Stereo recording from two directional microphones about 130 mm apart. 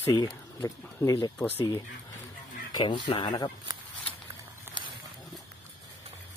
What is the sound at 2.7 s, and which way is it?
Speech, 35° left (ahead or behind).